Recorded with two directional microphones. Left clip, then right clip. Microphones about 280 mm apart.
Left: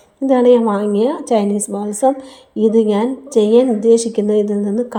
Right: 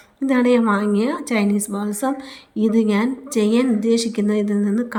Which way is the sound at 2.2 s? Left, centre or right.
Centre.